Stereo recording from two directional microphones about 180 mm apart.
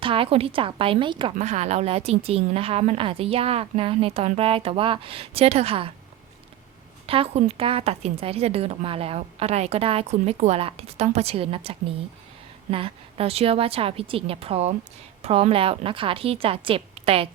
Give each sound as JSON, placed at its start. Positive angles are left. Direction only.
{"t": 0.0, "sound": "a woman's voice", "side_deg": -30}
{"t": 1.4, "sound": "a woman's voice", "side_deg": -40}
{"t": 7.1, "sound": "a woman's voice", "side_deg": -35}